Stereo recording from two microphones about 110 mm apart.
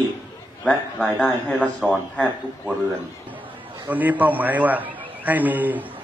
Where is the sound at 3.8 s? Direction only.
15° right (ahead or behind).